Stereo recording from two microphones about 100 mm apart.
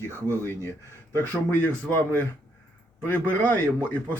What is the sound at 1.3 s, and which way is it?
Speech, 15° left (ahead or behind).